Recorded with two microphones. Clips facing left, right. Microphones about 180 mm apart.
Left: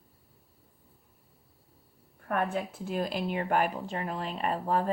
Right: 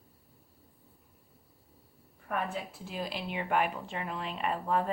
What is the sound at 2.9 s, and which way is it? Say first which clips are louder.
Speech: left 6 dB; 50° left (ahead or behind).